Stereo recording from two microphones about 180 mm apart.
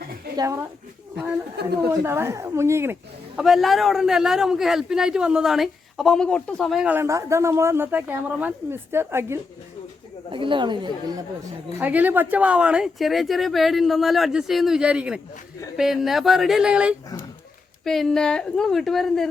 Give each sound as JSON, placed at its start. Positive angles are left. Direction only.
{"t": 0.3, "sound": "speech", "side_deg": -15}
{"t": 1.6, "sound": "a woman's voice", "side_deg": -65}
{"t": 2.0, "sound": "speech", "side_deg": -15}
{"t": 3.4, "sound": "a man's voice", "side_deg": 0}
{"t": 10.3, "sound": "speech", "side_deg": -25}
{"t": 11.8, "sound": "a man's voice", "side_deg": -10}